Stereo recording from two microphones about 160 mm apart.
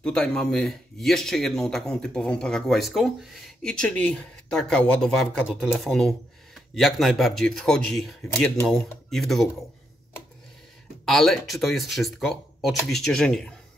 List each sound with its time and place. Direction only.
0.0 s speech: 5° left (ahead or behind)
8.2 s speech: 20° left (ahead or behind)
9.1 s speech: centre (ahead or behind)
11.1 s speech: centre (ahead or behind)